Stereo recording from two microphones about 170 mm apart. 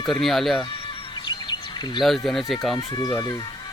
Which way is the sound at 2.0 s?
Centre (ahead or behind).